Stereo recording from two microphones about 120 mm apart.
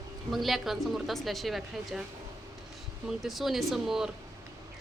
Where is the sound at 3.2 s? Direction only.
Centre (ahead or behind).